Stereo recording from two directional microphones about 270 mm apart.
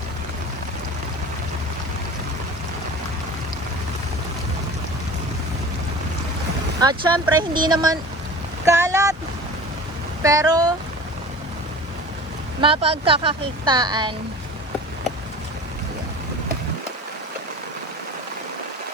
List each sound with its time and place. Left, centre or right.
6.7 s speech: centre
8.6 s boat: centre
10.2 s speech: centre
12.5 s a woman's voice: centre